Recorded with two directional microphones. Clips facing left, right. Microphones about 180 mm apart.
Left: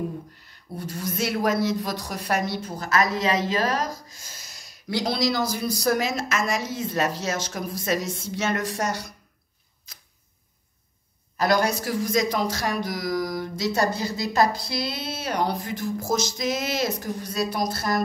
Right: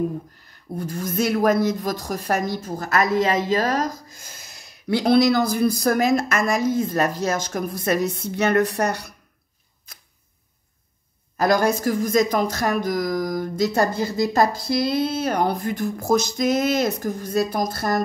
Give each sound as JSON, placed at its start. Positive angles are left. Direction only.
{"t": 0.7, "sound": "a woman's voice", "side_deg": -50}
{"t": 11.3, "sound": "a woman's voice", "side_deg": -50}